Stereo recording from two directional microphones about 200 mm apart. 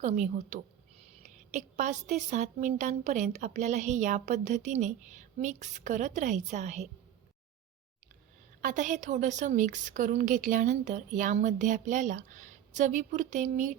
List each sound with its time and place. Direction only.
0.0 s a woman's voice: 35° right (ahead or behind)
8.6 s a woman's voice: 40° right (ahead or behind)